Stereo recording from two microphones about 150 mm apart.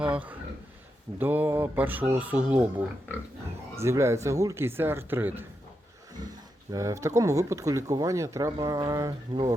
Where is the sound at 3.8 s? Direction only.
20° right (ahead or behind).